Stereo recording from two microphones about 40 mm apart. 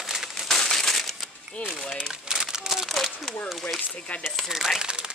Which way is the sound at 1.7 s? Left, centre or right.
Centre.